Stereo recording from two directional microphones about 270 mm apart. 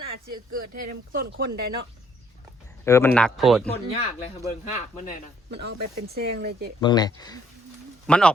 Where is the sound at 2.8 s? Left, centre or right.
Centre.